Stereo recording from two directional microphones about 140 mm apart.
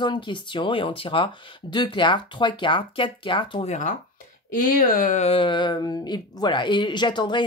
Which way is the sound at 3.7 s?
60° left (ahead or behind).